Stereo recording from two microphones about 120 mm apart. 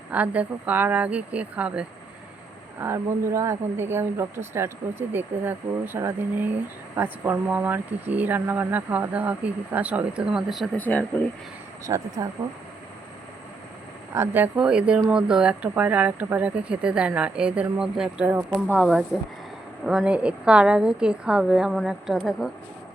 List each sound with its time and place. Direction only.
0.1 s speech: 10° right (ahead or behind)
2.8 s speech: 25° right (ahead or behind); by 10.7 s 5° right (ahead or behind)
10.8 s speech: 15° left (ahead or behind)
11.9 s speech: 30° right (ahead or behind)
14.1 s speech: 20° right (ahead or behind)
18.8 s speech: 5° right (ahead or behind)